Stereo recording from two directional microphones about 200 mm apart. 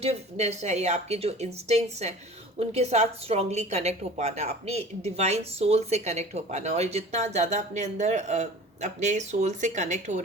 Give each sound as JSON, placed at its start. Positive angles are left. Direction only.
{"t": 0.0, "sound": "speech", "side_deg": -30}